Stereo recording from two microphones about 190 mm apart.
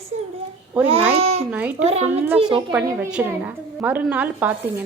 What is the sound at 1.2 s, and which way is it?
Speech, 35° right (ahead or behind).